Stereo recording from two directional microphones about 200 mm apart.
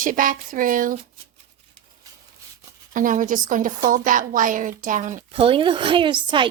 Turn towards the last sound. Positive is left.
turn(degrees=-25)  # may be behind; listen again after turning